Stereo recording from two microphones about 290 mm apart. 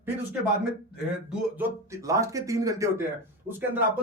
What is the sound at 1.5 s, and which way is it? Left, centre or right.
Speech, centre.